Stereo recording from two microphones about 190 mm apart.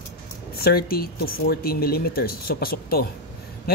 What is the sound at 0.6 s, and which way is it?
Speech, 50° left (ahead or behind).